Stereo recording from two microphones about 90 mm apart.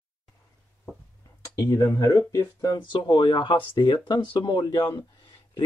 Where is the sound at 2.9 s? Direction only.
60° left (ahead or behind).